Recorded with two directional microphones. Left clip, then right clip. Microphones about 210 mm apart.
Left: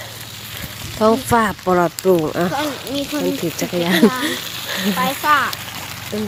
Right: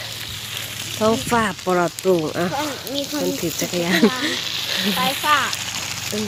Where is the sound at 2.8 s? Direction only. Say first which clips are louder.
Left 2 dB; 40° left (ahead or behind).